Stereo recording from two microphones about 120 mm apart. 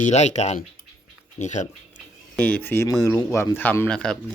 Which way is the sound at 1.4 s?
75° left (ahead or behind).